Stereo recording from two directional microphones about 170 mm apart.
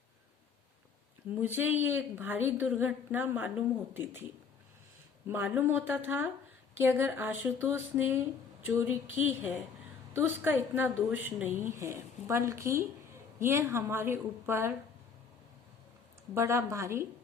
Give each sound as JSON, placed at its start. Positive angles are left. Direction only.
{"t": 1.4, "sound": "a woman's voice", "side_deg": -10}
{"t": 5.3, "sound": "a woman's voice", "side_deg": -10}
{"t": 16.3, "sound": "a woman's voice", "side_deg": -15}